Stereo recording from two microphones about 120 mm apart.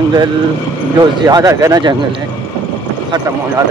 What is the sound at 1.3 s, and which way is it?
Speech, 30° right (ahead or behind).